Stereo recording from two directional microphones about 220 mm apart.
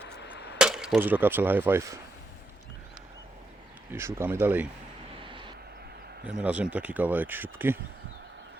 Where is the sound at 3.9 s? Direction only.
10° right (ahead or behind).